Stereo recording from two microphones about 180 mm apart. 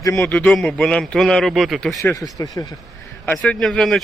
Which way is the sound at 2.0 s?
20° left (ahead or behind).